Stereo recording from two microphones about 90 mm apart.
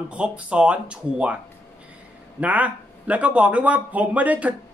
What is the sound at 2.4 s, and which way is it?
Speech, 15° right (ahead or behind).